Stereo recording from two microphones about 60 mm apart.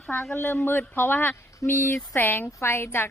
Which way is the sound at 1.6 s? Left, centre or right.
Left.